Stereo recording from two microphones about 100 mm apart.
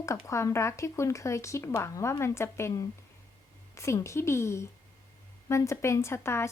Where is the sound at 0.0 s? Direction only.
30° left (ahead or behind).